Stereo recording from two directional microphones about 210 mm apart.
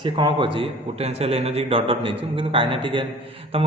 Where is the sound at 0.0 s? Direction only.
20° right (ahead or behind).